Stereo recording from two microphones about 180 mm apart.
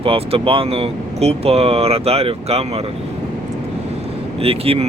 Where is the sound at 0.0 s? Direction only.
30° right (ahead or behind).